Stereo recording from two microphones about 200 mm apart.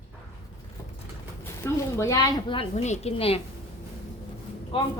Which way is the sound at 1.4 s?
15° left (ahead or behind).